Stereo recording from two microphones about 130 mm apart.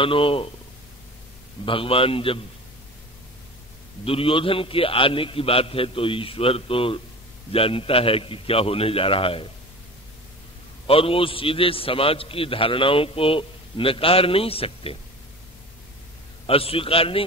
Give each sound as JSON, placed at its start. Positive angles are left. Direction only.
{"t": 0.0, "sound": "a man's voice", "side_deg": 45}
{"t": 1.7, "sound": "a man's voice", "side_deg": 45}
{"t": 4.0, "sound": "a man's voice", "side_deg": 45}
{"t": 10.9, "sound": "a man's voice", "side_deg": 45}
{"t": 16.4, "sound": "a man's voice", "side_deg": 45}